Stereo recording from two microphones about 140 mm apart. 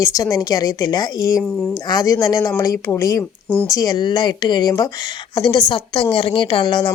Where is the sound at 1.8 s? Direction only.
25° left (ahead or behind).